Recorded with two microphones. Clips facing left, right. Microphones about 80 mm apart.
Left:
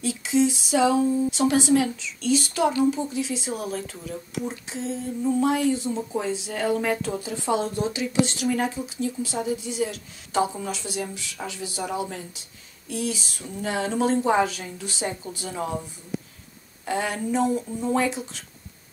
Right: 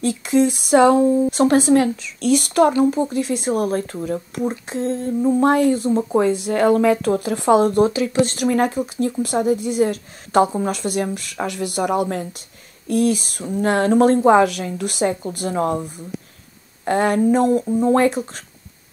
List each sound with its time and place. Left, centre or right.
0.0 s speech: right